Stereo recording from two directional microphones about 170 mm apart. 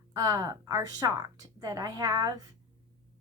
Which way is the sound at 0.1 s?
20° right (ahead or behind).